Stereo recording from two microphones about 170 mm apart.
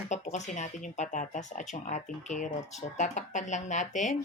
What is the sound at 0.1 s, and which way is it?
Speech, 45° left (ahead or behind).